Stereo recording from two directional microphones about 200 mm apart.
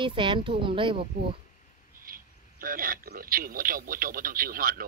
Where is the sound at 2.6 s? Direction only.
45° right (ahead or behind).